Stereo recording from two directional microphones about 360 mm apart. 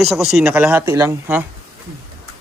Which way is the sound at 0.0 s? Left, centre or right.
Centre.